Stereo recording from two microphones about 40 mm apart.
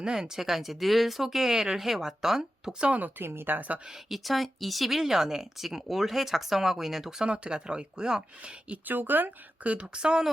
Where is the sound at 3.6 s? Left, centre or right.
Right.